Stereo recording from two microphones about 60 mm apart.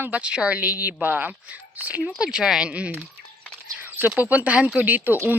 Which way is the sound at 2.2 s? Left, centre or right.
Centre.